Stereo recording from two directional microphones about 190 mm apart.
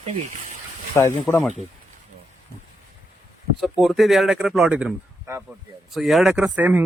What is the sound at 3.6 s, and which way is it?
Speech, centre (ahead or behind).